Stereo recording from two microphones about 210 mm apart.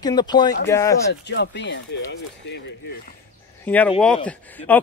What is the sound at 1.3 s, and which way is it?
Speech, 55° left (ahead or behind).